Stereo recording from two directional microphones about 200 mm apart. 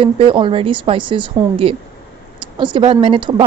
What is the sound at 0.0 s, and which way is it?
A woman's voice, 25° right (ahead or behind).